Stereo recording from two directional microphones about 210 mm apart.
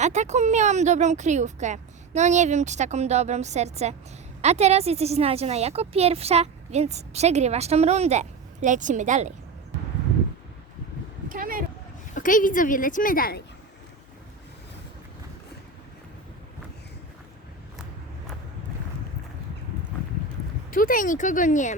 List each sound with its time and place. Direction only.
0.0 s a woman's voice: 35° right (ahead or behind)
11.3 s a sound: 40° right (ahead or behind)
12.1 s a woman's voice: 40° left (ahead or behind)
20.7 s a woman's voice: 40° left (ahead or behind)